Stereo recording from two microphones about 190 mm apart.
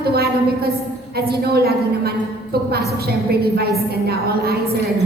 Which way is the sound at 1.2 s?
55° right (ahead or behind).